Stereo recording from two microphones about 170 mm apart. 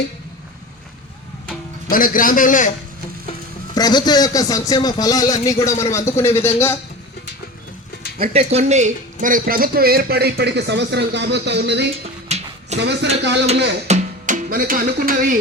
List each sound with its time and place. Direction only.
1.9 s a man's voice: 55° left (ahead or behind)
3.8 s a man's voice: 25° left (ahead or behind)
8.2 s speech: 40° right (ahead or behind); by 11.9 s 90° right
12.3 s a sound: 40° right (ahead or behind)
12.8 s speech: 80° right
13.8 s music: 45° right (ahead or behind)